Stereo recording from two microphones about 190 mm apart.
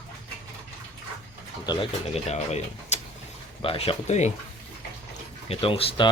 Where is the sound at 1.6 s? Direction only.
25° left (ahead or behind).